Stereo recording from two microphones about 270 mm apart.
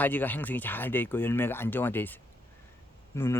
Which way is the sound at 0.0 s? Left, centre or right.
Centre.